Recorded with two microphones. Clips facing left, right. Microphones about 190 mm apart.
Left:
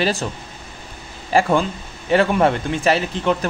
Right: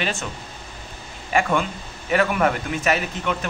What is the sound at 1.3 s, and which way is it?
Speech, 30° left (ahead or behind).